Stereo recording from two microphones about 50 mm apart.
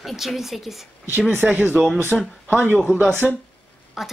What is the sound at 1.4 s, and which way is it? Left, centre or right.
Speech, right.